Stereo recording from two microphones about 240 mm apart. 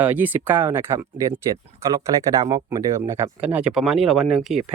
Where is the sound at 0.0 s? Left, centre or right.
Centre.